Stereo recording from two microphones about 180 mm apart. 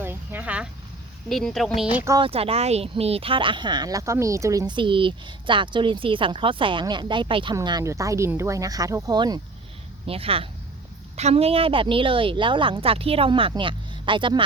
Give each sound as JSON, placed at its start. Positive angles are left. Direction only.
{"t": 0.0, "sound": "a sound", "side_deg": -10}
{"t": 1.3, "sound": "speech", "side_deg": 0}
{"t": 2.1, "sound": "speech", "side_deg": -30}